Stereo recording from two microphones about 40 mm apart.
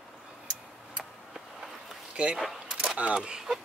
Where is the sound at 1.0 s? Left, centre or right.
Centre.